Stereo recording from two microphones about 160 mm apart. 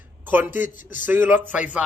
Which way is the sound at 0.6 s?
55° left (ahead or behind).